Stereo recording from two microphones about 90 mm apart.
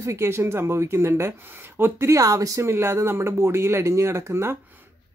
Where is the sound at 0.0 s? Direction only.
30° right (ahead or behind).